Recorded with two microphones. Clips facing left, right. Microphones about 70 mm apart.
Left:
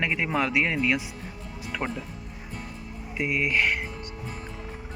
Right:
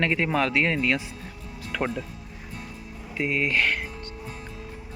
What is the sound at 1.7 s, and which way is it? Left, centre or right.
Music, centre.